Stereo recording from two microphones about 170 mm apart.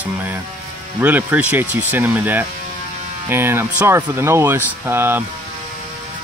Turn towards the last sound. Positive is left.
turn(degrees=-15)  # may be behind; listen again after turning